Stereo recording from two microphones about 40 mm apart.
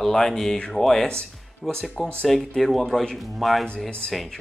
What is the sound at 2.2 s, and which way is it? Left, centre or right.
Speech, centre.